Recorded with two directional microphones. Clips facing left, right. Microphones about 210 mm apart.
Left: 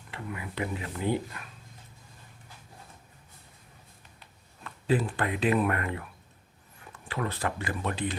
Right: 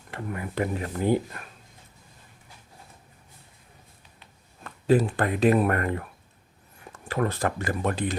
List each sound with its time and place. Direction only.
0.1 s speech: 45° right (ahead or behind)
4.6 s speech: 45° right (ahead or behind)
7.1 s speech: 45° right (ahead or behind)